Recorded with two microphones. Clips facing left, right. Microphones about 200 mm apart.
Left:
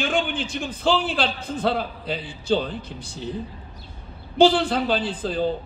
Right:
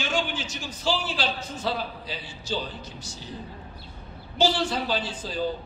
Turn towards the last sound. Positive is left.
turn(degrees=55)  # may be behind; listen again after turning